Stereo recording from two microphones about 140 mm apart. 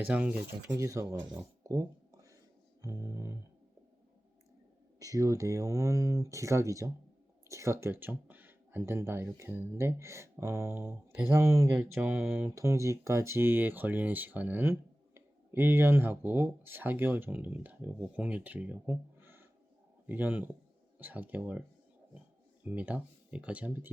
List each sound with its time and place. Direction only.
0.0 s speech: 10° right (ahead or behind)
0.7 s speech: 20° right (ahead or behind)
1.6 s a sound: 25° right (ahead or behind)
2.8 s speech: 25° right (ahead or behind)
4.9 s speech: 25° right (ahead or behind)
22.6 s speech: 10° right (ahead or behind)